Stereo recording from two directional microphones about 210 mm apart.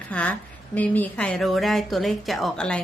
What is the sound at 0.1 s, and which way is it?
Speech, 5° left (ahead or behind).